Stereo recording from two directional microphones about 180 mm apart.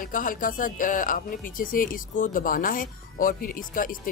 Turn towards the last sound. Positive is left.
turn(degrees=50)  # may be behind; listen again after turning